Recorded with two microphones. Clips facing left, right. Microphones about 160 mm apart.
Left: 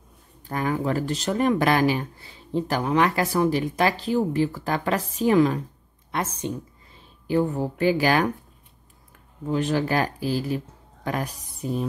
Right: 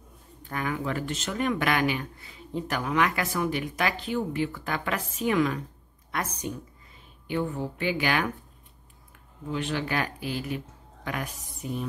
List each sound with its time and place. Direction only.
0.4 s a woman's voice: 35° left (ahead or behind)
7.2 s speech: 40° left (ahead or behind)
9.5 s speech: 40° left (ahead or behind)